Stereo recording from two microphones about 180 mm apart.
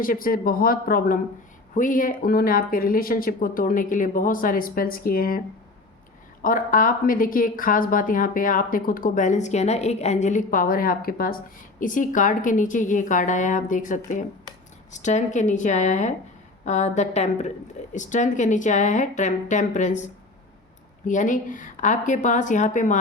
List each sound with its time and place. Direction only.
0.0 s a woman's voice: 50° left (ahead or behind)
6.4 s a woman's voice: 50° left (ahead or behind)
21.1 s a woman's voice: 45° left (ahead or behind)